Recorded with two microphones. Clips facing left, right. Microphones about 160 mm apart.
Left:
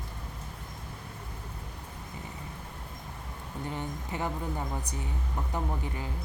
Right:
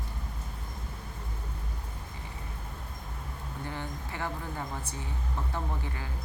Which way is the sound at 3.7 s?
20° left (ahead or behind).